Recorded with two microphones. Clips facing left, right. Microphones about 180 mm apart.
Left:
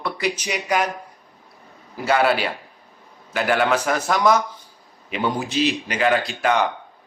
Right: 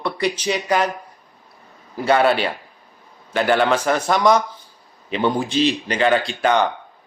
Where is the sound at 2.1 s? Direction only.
5° left (ahead or behind).